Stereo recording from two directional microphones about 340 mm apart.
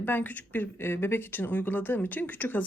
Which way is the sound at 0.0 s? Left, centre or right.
Centre.